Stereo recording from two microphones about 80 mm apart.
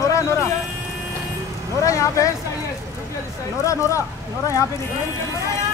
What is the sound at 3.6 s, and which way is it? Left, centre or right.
Speech, left.